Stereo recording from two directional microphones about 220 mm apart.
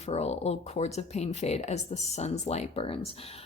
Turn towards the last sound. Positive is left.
turn(degrees=25)  # may be behind; listen again after turning